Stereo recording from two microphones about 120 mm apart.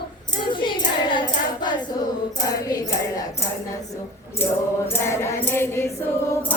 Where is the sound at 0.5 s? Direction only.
40° left (ahead or behind).